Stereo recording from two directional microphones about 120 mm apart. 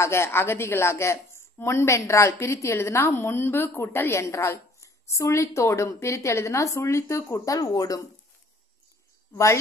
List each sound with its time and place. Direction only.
0.0 s a woman's voice: 20° left (ahead or behind)
9.3 s a woman's voice: 25° left (ahead or behind)